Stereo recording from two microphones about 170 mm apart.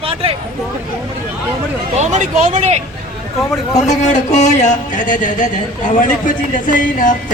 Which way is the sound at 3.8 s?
45° left (ahead or behind).